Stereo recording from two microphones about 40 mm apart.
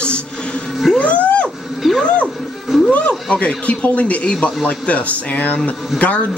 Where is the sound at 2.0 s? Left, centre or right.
Left.